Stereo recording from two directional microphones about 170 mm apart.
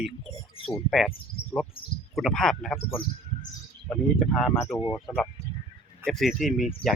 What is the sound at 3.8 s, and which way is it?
Speech, 5° left (ahead or behind).